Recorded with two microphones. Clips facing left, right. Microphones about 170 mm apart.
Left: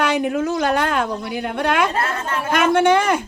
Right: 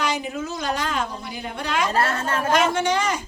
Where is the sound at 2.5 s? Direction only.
55° left (ahead or behind).